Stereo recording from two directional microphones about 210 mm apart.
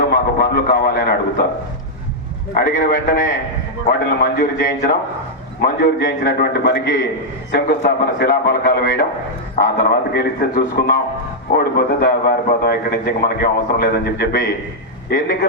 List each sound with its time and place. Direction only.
0.1 s speech: 50° left (ahead or behind)
2.6 s a man's voice: 40° left (ahead or behind)